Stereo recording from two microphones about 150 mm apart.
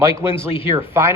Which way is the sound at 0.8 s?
15° right (ahead or behind).